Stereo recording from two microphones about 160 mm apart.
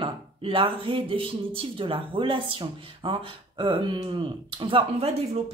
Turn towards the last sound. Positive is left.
turn(degrees=-35)  # may be behind; listen again after turning